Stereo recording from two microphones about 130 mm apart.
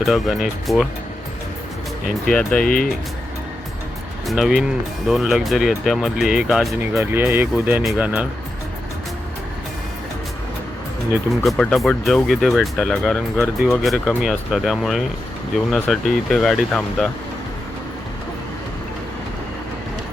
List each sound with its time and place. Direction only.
0.0 s speech: centre (ahead or behind)
2.3 s speech: 5° left (ahead or behind)
2.6 s speech: 90° left
4.3 s speech: centre (ahead or behind)
6.7 s speech: 20° right (ahead or behind)
11.4 s speech: 5° left (ahead or behind)